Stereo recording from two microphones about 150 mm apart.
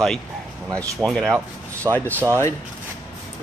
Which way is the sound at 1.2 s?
15° right (ahead or behind).